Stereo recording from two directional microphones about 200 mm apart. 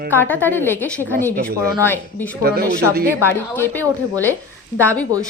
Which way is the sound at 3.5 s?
10° left (ahead or behind).